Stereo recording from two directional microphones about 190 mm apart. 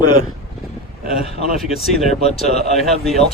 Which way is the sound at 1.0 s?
30° left (ahead or behind).